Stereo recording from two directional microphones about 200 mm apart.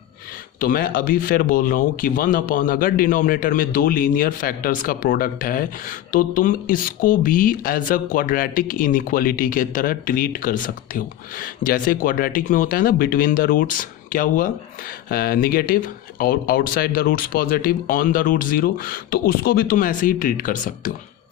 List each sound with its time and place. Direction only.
0.6 s speech: 45° left (ahead or behind)